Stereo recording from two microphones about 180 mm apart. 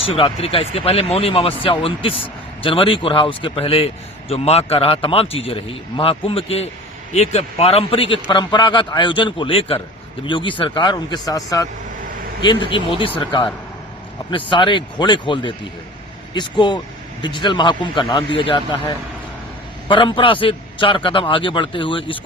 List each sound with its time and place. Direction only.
0.0 s speech: 30° left (ahead or behind)